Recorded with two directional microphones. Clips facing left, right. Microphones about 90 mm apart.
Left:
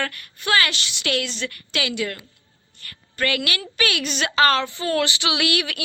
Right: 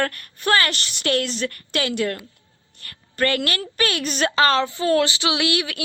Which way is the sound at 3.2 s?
40° right (ahead or behind).